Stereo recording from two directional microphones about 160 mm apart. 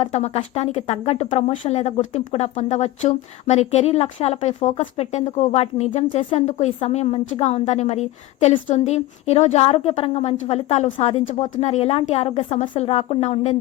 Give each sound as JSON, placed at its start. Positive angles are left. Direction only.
{"t": 0.0, "sound": "speech", "side_deg": 45}